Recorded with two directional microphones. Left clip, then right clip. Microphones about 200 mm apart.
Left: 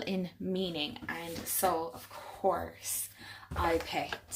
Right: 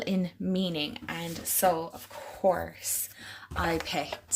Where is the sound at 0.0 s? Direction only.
35° right (ahead or behind).